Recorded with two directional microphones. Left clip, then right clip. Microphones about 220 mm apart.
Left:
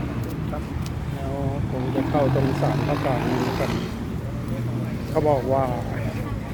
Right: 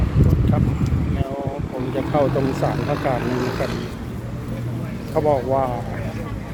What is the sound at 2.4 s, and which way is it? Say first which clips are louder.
Speech: right 2 dB; 40° left (ahead or behind).